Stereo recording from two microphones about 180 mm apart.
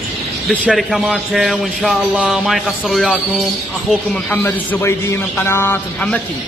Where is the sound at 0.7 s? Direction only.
Centre (ahead or behind).